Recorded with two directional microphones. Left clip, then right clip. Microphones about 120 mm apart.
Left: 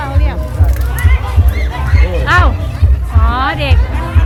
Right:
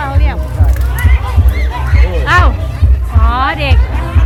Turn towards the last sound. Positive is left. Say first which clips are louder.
# right 1 dB
turn(degrees=-15)  # may be behind; listen again after turning